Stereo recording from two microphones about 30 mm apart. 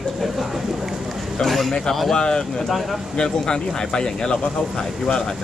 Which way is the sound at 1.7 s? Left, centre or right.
Centre.